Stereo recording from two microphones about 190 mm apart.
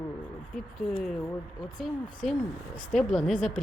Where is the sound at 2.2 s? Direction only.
Centre (ahead or behind).